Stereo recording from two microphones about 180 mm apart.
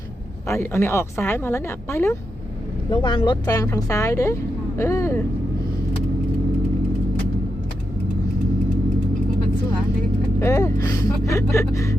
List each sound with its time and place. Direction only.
0.4 s speech: 15° left (ahead or behind)
2.9 s speech: 25° left (ahead or behind)
10.4 s speech: 15° left (ahead or behind)